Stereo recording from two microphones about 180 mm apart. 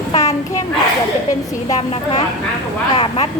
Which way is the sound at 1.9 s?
35° left (ahead or behind).